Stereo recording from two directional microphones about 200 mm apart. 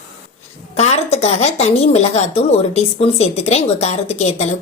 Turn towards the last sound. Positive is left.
turn(degrees=35)  # may be behind; listen again after turning